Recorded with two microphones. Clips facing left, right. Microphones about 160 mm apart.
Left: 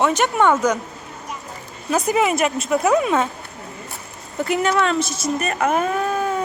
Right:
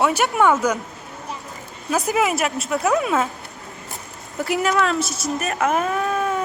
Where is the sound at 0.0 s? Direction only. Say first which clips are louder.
Left 1 dB; 10° right (ahead or behind).